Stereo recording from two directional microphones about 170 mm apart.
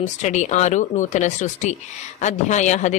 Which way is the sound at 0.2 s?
45° left (ahead or behind).